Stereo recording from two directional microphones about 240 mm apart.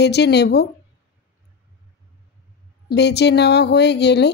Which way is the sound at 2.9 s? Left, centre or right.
Left.